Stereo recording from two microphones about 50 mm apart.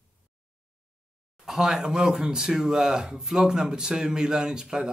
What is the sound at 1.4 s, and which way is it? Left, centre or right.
Speech, centre.